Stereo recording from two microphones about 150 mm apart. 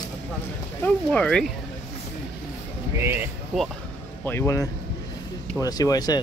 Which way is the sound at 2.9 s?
15° right (ahead or behind).